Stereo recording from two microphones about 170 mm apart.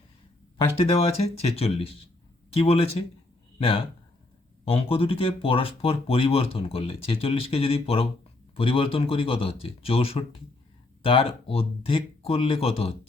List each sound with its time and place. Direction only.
0.5 s speech: 35° left (ahead or behind)